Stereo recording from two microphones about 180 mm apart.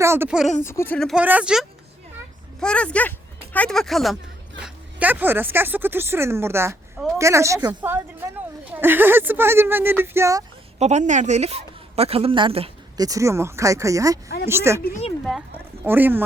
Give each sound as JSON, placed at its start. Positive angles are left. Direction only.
{"t": 0.0, "sound": "speech", "side_deg": -15}
{"t": 0.6, "sound": "speech", "side_deg": 15}
{"t": 0.9, "sound": "speech", "side_deg": 0}
{"t": 1.2, "sound": "a woman's voice", "side_deg": -10}
{"t": 2.6, "sound": "a woman's voice", "side_deg": 5}
{"t": 10.8, "sound": "a woman's voice", "side_deg": -40}
{"t": 13.0, "sound": "a woman's voice", "side_deg": -20}
{"t": 15.2, "sound": "speech", "side_deg": 0}
{"t": 15.8, "sound": "a woman's voice", "side_deg": -10}